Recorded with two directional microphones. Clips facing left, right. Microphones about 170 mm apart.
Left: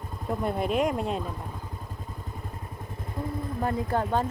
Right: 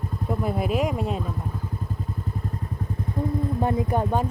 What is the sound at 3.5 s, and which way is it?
Speech, 20° right (ahead or behind).